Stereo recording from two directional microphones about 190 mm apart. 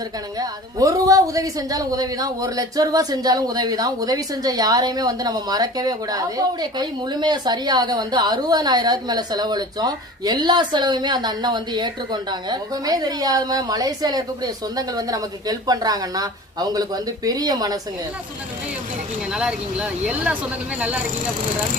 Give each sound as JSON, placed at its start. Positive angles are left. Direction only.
{"t": 0.3, "sound": "a woman's voice", "side_deg": -20}
{"t": 19.3, "sound": "speech", "side_deg": -5}